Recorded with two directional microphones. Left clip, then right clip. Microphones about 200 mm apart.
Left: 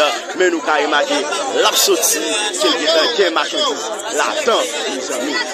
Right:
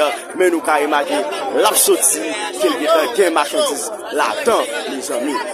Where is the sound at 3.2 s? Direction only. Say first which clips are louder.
Right 1 dB; 25° right (ahead or behind).